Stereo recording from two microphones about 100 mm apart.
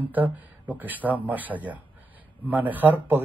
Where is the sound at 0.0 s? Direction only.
15° right (ahead or behind).